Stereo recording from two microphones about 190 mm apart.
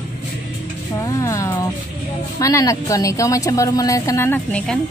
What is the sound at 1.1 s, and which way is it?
A woman's voice, 15° left (ahead or behind).